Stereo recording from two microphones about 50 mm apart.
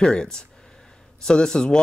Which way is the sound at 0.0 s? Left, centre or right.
Centre.